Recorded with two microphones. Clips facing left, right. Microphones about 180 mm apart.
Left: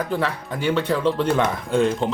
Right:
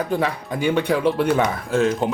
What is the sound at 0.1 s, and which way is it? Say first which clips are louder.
Speech: right 2 dB; 15° right (ahead or behind).